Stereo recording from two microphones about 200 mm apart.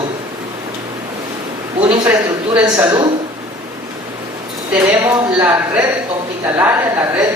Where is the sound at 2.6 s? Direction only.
20° right (ahead or behind).